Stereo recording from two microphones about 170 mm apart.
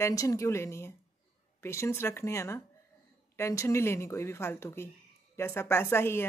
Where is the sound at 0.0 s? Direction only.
20° left (ahead or behind).